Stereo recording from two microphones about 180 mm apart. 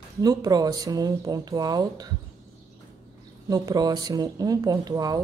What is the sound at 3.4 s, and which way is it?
A woman's voice, 20° right (ahead or behind).